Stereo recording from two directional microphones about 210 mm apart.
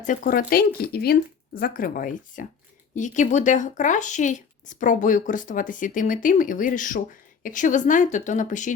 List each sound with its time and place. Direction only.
0.0 s speech: 40° left (ahead or behind)